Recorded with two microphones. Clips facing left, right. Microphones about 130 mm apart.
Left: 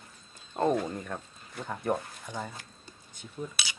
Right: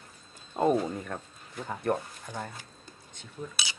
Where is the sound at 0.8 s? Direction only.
Centre (ahead or behind).